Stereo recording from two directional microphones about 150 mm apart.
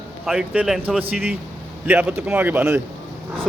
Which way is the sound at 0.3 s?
5° right (ahead or behind).